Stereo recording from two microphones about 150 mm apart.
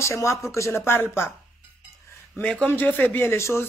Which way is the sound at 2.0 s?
20° left (ahead or behind).